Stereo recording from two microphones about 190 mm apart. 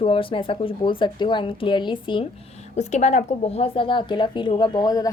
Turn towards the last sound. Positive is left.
turn(degrees=20)  # may be behind; listen again after turning